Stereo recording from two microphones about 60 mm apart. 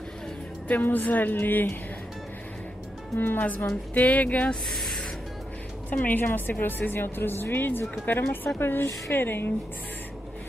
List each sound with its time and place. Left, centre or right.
0.7 s speech: left
3.2 s speech: left
4.6 s music: centre
5.9 s speech: left